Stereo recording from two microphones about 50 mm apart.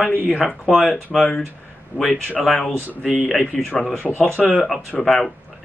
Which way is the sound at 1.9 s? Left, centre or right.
Right.